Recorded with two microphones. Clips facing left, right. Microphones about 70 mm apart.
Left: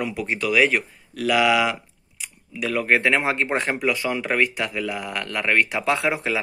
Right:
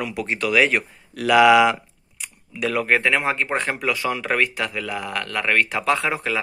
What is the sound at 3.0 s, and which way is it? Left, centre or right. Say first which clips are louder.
Speech: even; left.